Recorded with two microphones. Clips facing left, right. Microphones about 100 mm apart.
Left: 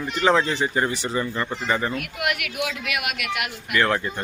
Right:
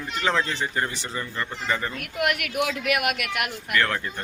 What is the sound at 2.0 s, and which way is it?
A woman's voice, 45° right (ahead or behind).